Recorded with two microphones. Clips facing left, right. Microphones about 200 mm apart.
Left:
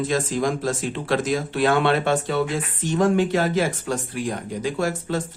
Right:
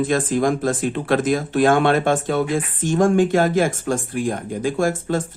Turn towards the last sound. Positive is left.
turn(degrees=-50)  # may be behind; listen again after turning